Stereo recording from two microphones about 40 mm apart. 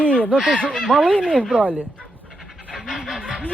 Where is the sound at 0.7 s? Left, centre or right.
Centre.